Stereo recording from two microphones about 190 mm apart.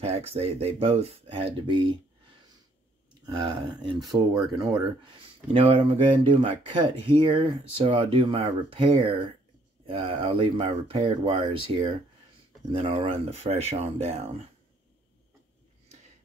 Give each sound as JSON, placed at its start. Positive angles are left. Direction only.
{"t": 0.0, "sound": "speech", "side_deg": -35}
{"t": 3.3, "sound": "speech", "side_deg": -25}